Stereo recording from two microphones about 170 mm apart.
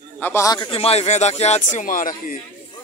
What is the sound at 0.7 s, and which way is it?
Speech, 35° left (ahead or behind).